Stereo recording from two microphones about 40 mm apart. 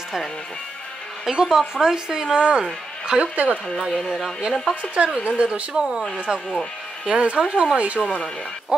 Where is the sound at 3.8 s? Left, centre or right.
Centre.